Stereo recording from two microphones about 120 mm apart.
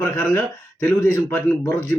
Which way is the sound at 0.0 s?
20° left (ahead or behind).